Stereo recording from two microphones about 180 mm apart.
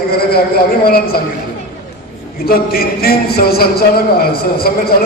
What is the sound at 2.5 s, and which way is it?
A man's voice, 55° left (ahead or behind).